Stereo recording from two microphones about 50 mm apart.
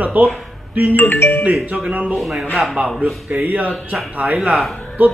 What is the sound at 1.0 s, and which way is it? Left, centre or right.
Speech, left.